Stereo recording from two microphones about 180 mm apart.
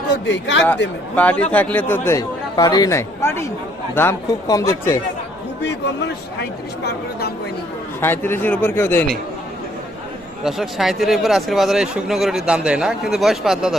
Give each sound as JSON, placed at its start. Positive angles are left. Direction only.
{"t": 0.1, "sound": "a man's voice", "side_deg": 85}
{"t": 1.1, "sound": "speech", "side_deg": 10}
{"t": 6.4, "sound": "speech", "side_deg": 60}
{"t": 8.0, "sound": "speech", "side_deg": 10}
{"t": 10.4, "sound": "speech", "side_deg": 0}